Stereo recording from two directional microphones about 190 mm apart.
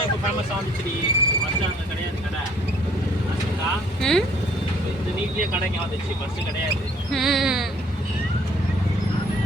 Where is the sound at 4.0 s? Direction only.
5° left (ahead or behind).